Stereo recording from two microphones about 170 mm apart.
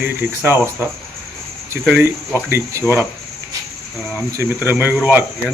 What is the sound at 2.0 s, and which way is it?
Speech, 15° right (ahead or behind).